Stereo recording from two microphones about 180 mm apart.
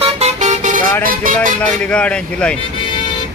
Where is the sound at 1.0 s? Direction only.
50° right (ahead or behind).